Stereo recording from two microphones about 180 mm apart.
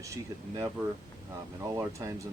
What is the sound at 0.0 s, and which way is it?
Speech, 20° right (ahead or behind).